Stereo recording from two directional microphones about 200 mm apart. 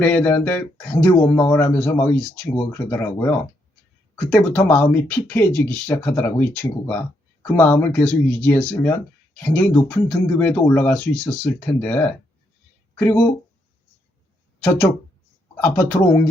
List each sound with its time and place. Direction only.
0.0 s speech: 5° left (ahead or behind)
14.6 s speech: 10° left (ahead or behind)